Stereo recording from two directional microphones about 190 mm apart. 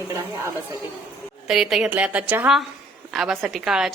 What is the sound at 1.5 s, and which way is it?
Speech, centre (ahead or behind).